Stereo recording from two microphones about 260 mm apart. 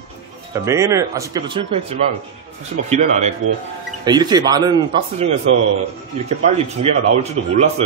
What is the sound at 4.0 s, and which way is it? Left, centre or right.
Speech, centre.